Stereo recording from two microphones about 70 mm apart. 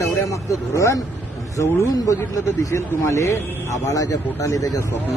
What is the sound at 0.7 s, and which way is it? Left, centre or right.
A man's voice, left.